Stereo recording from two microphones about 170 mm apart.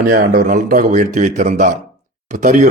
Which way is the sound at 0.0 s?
60° right (ahead or behind).